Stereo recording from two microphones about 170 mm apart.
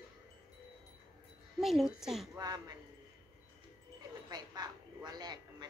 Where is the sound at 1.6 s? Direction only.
Centre (ahead or behind).